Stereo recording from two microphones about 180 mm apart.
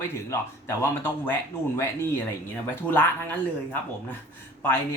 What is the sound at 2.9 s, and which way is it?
Speech, 10° left (ahead or behind).